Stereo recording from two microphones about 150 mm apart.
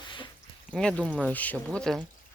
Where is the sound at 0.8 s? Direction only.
5° left (ahead or behind).